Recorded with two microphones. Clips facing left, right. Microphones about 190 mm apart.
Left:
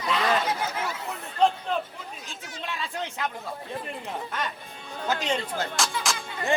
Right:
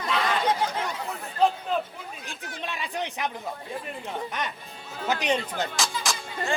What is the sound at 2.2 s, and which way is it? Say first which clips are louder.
Chatter: right 2 dB; 60° right (ahead or behind).